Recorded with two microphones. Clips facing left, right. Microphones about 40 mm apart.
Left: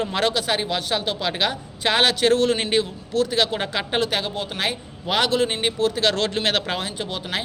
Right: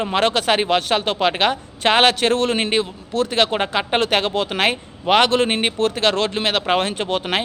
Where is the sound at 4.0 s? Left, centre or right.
Right.